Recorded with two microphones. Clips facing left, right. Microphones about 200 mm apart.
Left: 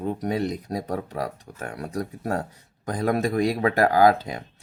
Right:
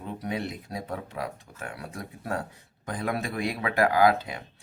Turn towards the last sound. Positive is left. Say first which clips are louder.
# left 4 dB
turn(degrees=40)  # may be behind; listen again after turning